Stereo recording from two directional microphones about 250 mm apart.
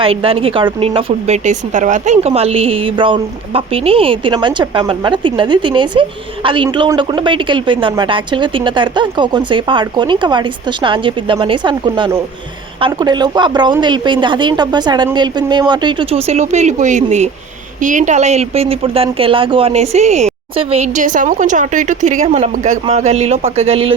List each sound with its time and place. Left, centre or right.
0.0 s a woman's voice: right